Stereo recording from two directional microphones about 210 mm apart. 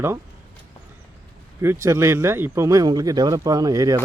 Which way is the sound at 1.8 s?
15° right (ahead or behind).